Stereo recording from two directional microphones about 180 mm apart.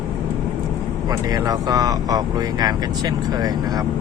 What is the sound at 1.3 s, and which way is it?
Speech, 20° right (ahead or behind).